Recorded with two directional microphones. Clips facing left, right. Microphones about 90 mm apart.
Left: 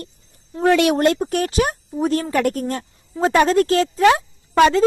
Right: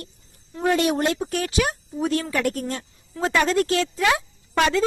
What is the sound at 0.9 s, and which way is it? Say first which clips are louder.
Speech: left 6 dB; 50° left (ahead or behind).